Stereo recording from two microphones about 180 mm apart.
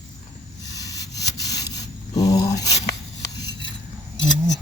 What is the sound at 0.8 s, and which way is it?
Rub, 20° left (ahead or behind).